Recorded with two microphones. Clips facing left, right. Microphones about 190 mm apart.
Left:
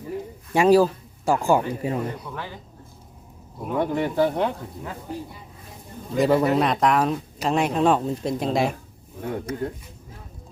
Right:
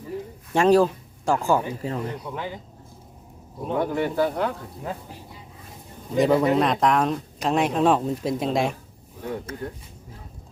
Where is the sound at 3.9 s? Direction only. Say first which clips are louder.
Left 1 dB; 20° left (ahead or behind).